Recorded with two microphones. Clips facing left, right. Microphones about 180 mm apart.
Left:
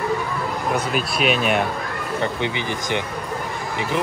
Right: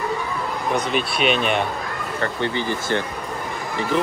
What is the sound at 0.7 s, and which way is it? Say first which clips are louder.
Speech: right 3 dB; 5° left (ahead or behind).